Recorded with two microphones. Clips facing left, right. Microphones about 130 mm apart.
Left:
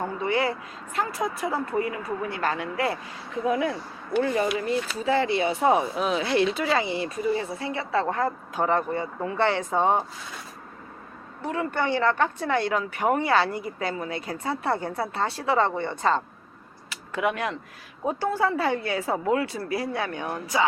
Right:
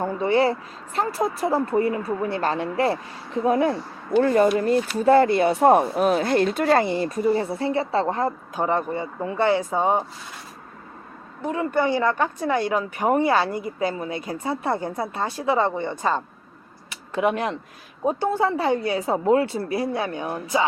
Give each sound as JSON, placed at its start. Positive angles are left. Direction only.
{"t": 0.0, "sound": "speech", "side_deg": -30}
{"t": 4.2, "sound": "speech", "side_deg": -50}
{"t": 11.4, "sound": "speech", "side_deg": -20}
{"t": 16.9, "sound": "speech", "side_deg": -25}